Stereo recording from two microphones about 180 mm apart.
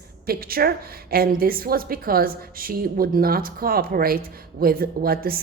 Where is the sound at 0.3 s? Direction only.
55° right (ahead or behind).